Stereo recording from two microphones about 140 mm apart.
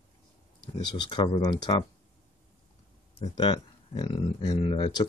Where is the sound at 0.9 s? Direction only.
35° left (ahead or behind).